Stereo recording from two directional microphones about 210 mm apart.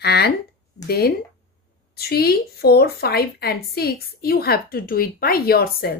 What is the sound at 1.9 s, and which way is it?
A woman's voice, 50° left (ahead or behind).